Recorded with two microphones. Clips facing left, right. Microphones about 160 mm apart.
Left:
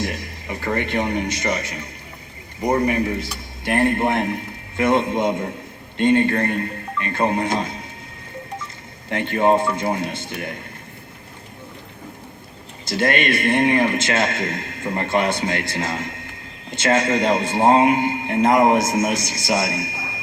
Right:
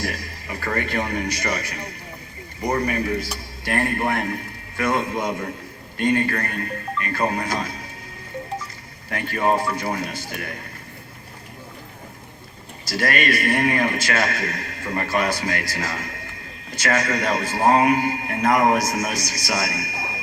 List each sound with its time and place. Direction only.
0.0 s a man's voice: 20° left (ahead or behind)
9.0 s a man's voice: 25° left (ahead or behind)
12.8 s a man's voice: 25° left (ahead or behind)